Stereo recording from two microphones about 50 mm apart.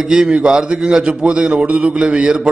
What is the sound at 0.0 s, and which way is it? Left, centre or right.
A man's voice, centre.